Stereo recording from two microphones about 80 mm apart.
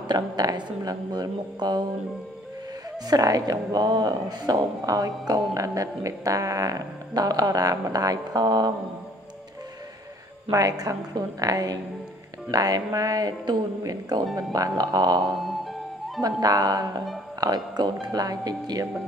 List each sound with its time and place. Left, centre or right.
0.1 s speech: right
3.1 s speech: right
10.5 s speech: right